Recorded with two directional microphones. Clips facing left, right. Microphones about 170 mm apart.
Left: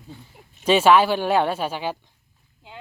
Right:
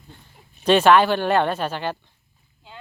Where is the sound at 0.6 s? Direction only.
5° left (ahead or behind).